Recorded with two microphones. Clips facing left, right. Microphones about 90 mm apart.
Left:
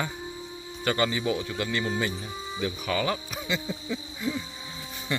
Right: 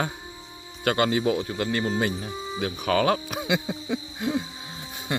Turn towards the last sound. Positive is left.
turn(degrees=-65)  # may be behind; listen again after turning